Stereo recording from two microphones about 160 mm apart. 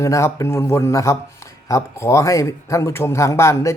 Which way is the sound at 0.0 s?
15° left (ahead or behind).